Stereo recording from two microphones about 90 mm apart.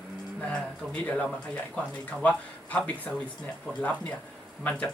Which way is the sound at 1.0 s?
15° left (ahead or behind).